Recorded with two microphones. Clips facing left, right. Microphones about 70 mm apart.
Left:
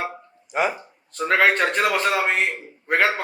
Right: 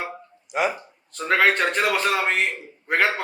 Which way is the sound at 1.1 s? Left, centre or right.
Centre.